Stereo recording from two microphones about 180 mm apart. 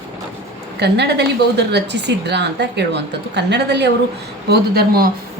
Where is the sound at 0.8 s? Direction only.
65° right (ahead or behind).